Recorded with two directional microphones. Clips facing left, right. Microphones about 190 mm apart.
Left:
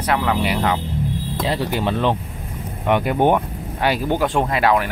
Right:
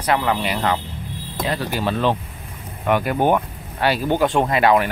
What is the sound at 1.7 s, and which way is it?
Speech, 20° left (ahead or behind).